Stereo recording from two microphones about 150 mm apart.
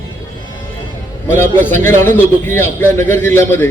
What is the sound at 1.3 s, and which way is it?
A man's voice, 15° left (ahead or behind).